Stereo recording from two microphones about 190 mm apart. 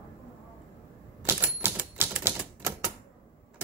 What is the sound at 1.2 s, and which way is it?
Typewriter, 10° right (ahead or behind).